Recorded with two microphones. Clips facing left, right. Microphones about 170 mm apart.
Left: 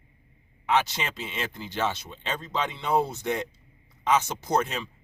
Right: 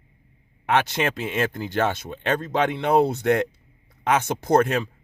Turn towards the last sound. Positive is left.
turn(degrees=-50)  # may be behind; listen again after turning